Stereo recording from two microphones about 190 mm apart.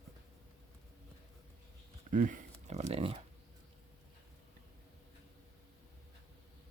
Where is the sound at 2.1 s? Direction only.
40° right (ahead or behind).